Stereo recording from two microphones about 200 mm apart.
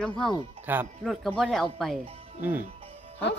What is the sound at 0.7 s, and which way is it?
Speech, 10° right (ahead or behind).